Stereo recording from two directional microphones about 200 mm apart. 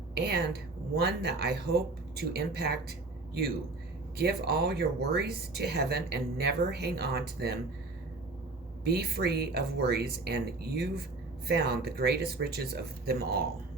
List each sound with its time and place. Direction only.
0.1 s speech: 55° right (ahead or behind)
4.2 s speech: 55° right (ahead or behind)
8.8 s speech: 55° right (ahead or behind)